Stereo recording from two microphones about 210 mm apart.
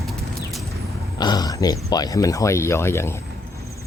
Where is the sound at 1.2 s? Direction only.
20° left (ahead or behind).